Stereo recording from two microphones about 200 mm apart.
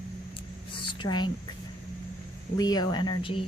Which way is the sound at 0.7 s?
25° left (ahead or behind).